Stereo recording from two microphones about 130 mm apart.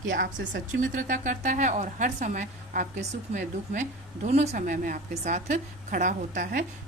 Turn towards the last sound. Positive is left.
turn(degrees=-75)  # may be behind; listen again after turning